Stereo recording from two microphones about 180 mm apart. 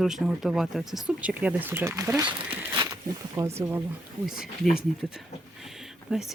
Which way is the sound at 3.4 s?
15° right (ahead or behind).